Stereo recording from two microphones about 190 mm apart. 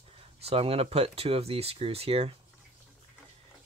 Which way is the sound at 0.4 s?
30° right (ahead or behind).